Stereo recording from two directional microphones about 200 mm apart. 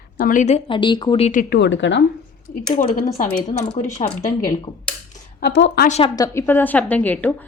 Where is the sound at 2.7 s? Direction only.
40° left (ahead or behind).